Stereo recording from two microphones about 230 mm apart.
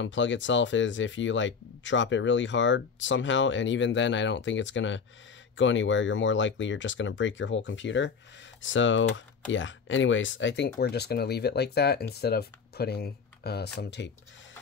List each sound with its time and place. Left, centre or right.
0.0 s speech: left